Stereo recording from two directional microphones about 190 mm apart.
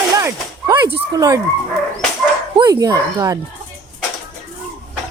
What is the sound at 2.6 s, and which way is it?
Speech, 20° right (ahead or behind).